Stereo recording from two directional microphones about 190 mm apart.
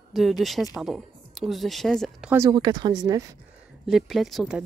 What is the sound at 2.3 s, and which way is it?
Speech, 20° right (ahead or behind).